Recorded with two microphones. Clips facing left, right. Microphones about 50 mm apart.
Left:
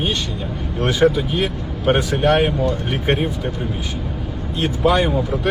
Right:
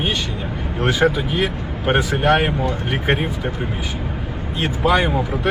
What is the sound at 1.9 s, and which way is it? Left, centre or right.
Speech, right.